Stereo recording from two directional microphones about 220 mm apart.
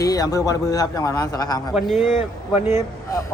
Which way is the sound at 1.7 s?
Centre (ahead or behind).